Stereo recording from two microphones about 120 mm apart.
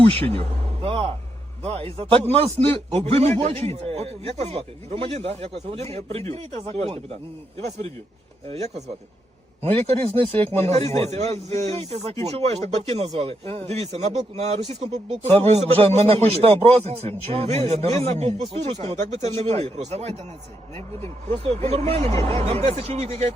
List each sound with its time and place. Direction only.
0.1 s a man's voice: 55° right (ahead or behind)
8.4 s speech: 65° right (ahead or behind)
21.5 s speech: 65° right (ahead or behind)